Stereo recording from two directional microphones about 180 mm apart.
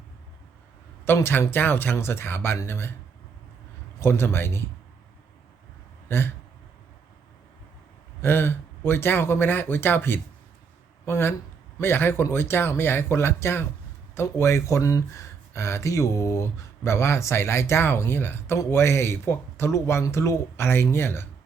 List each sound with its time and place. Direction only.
1.0 s speech: 15° left (ahead or behind)
4.0 s speech: 15° left (ahead or behind)
6.1 s a sound: 10° left (ahead or behind)
8.2 s speech: 10° left (ahead or behind)